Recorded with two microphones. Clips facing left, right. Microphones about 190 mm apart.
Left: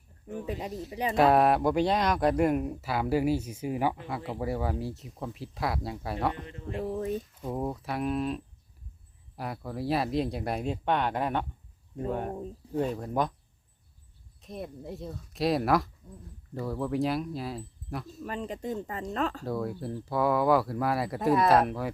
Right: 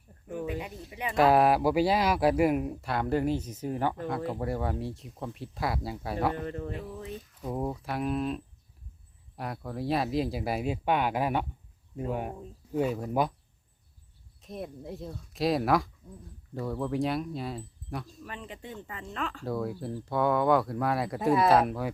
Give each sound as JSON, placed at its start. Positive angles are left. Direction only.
{"t": 0.9, "sound": "speech", "side_deg": 35}
{"t": 1.1, "sound": "speech", "side_deg": 0}
{"t": 6.3, "sound": "speech", "side_deg": -45}
{"t": 6.7, "sound": "speech", "side_deg": 45}
{"t": 7.4, "sound": "speech", "side_deg": 0}
{"t": 14.4, "sound": "speech", "side_deg": 0}
{"t": 18.2, "sound": "speech", "side_deg": 40}
{"t": 19.5, "sound": "speech", "side_deg": 0}